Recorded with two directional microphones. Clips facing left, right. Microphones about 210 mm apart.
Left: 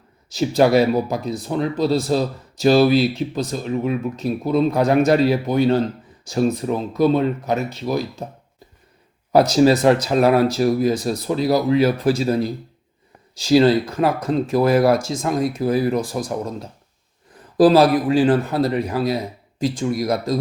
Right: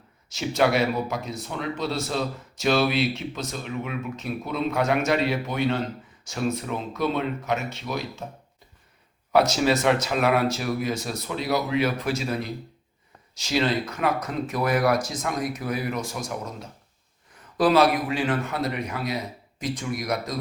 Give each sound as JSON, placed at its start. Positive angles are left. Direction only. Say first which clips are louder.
{"t": 0.3, "sound": "speech", "louder": "left 7 dB", "side_deg": 35}
{"t": 9.3, "sound": "speech", "louder": "left 7 dB", "side_deg": 35}